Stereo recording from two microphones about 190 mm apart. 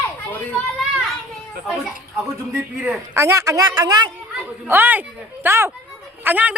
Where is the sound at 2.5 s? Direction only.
15° right (ahead or behind).